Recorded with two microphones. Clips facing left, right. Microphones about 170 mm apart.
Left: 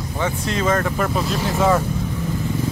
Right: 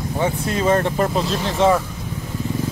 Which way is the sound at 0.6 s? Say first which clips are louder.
Right 3 dB; 30° right (ahead or behind).